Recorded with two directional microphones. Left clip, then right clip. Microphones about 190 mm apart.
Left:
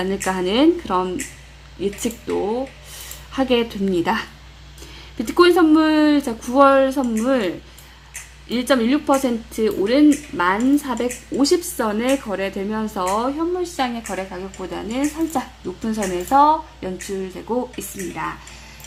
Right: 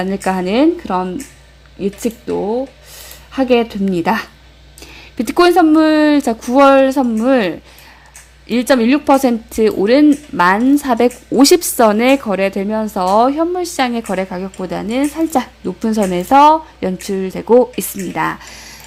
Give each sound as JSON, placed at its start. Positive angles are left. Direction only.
{"t": 0.0, "sound": "speech", "side_deg": -25}
{"t": 3.3, "sound": "speech", "side_deg": -25}